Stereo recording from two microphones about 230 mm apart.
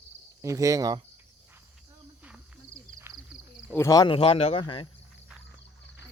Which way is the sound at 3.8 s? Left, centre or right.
Centre.